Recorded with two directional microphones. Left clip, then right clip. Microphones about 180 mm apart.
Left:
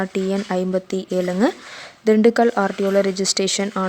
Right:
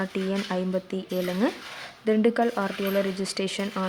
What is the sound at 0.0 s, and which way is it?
Speech, 30° left (ahead or behind).